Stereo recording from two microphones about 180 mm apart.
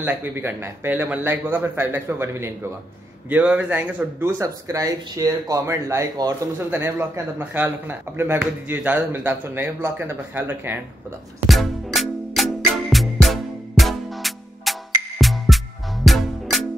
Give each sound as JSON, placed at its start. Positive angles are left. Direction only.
{"t": 0.0, "sound": "a man's voice", "side_deg": -10}
{"t": 11.4, "sound": "music", "side_deg": 0}